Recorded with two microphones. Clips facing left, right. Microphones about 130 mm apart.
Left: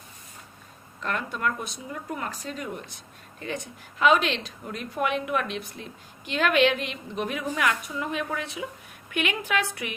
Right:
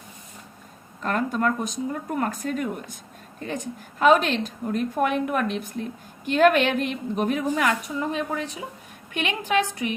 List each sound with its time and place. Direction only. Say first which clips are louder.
1.0 s a woman's voice: right 5 dB; 40° right (ahead or behind)